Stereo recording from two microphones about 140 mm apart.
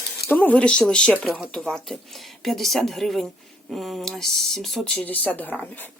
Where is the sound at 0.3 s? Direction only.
10° left (ahead or behind).